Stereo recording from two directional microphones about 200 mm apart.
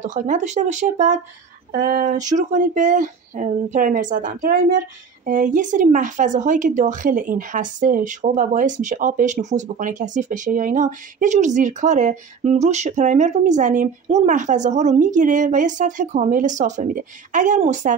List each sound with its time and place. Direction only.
0.0 s speech: 40° right (ahead or behind)
1.8 s a sound: 45° right (ahead or behind)
2.3 s speech: 40° right (ahead or behind)